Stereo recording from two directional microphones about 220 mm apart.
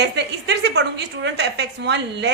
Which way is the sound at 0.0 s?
50° right (ahead or behind).